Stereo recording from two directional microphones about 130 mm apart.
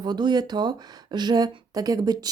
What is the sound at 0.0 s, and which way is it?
Speech, 35° right (ahead or behind).